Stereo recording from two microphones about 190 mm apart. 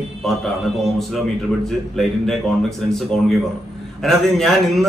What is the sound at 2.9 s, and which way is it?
A man's voice, 5° left (ahead or behind).